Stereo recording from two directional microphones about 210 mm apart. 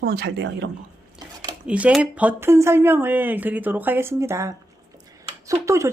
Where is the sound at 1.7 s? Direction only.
5° right (ahead or behind).